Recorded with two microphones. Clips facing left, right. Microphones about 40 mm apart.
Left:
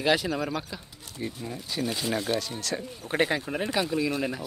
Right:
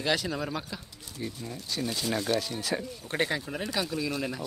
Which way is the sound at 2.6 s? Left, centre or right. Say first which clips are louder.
Right 1 dB; centre.